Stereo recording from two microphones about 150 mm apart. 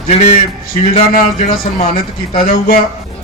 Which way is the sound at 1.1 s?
60° left (ahead or behind).